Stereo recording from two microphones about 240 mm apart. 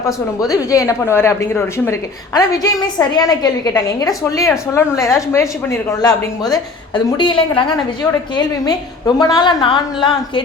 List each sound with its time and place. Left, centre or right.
0.3 s a woman's voice: centre